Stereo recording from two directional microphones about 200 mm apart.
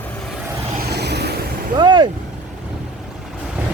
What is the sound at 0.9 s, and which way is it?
Vehicle, 55° right (ahead or behind).